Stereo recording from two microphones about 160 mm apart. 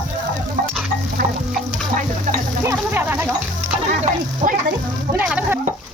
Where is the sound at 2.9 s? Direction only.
15° right (ahead or behind).